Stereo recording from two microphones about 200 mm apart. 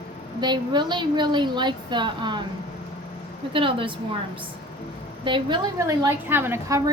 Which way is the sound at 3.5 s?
25° right (ahead or behind).